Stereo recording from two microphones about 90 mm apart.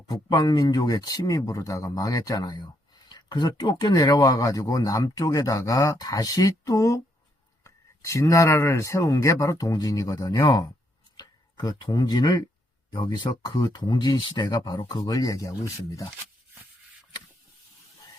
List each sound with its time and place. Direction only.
0.1 s speech: 50° left (ahead or behind)